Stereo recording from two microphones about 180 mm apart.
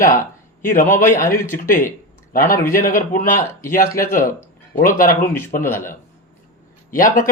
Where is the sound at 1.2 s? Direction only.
15° left (ahead or behind).